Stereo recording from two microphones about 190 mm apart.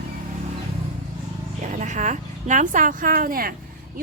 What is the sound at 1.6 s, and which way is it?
Speech, 40° right (ahead or behind).